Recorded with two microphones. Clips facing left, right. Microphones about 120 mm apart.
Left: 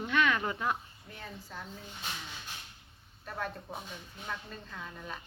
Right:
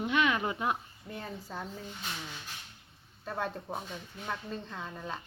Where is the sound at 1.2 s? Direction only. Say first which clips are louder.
Right 4 dB; 40° right (ahead or behind).